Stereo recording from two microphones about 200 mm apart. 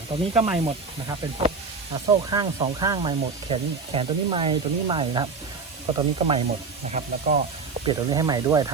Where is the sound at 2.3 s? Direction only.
20° right (ahead or behind).